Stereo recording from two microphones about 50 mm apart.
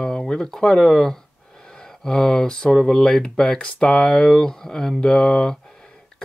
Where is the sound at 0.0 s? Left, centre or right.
Centre.